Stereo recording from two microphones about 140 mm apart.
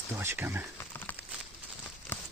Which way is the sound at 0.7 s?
15° left (ahead or behind).